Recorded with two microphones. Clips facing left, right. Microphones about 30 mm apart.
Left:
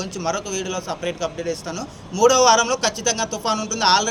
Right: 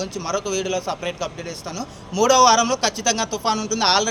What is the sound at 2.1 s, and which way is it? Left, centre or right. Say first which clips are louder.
Speech: even; right.